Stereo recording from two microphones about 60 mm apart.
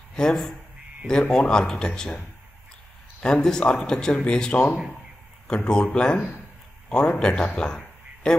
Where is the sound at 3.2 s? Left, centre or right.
Centre.